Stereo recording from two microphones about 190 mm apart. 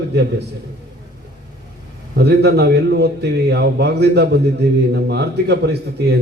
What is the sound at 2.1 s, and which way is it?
A man's voice, 60° right (ahead or behind).